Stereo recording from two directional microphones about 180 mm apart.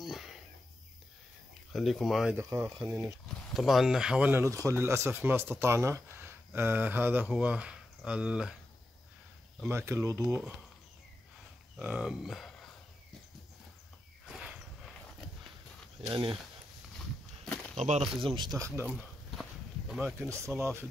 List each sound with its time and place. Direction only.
0.0 s a sound: centre (ahead or behind)
1.7 s speech: centre (ahead or behind)
2.3 s speech: 15° right (ahead or behind)
3.5 s speech: centre (ahead or behind)
9.7 s speech: 15° right (ahead or behind)
11.8 s speech: 5° right (ahead or behind)
14.2 s a sound: centre (ahead or behind)
16.1 s speech: 25° right (ahead or behind)
17.7 s speech: 40° right (ahead or behind)
18.4 s speech: 20° right (ahead or behind)
19.9 s speech: centre (ahead or behind)
20.2 s speech: 15° right (ahead or behind)